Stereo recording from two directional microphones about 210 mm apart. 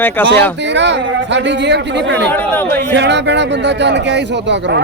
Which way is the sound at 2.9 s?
55° right (ahead or behind).